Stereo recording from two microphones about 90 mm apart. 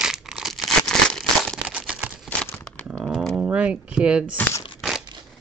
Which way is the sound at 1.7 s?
10° right (ahead or behind).